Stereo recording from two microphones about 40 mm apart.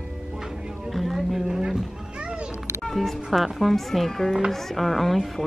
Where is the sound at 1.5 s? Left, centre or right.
Centre.